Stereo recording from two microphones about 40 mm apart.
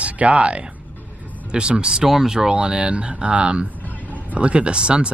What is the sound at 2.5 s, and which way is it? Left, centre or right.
Speech, right.